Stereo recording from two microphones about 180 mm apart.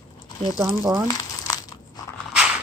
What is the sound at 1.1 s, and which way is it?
Crumpling, 20° left (ahead or behind).